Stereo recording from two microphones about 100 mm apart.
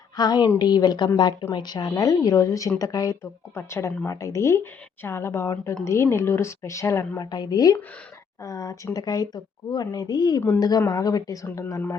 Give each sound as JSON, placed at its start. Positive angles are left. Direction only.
{"t": 0.2, "sound": "speech", "side_deg": 45}
{"t": 7.3, "sound": "speech", "side_deg": 40}
{"t": 11.4, "sound": "speech", "side_deg": 20}